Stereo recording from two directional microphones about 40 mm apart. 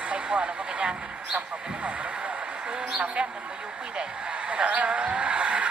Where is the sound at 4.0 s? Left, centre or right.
Right.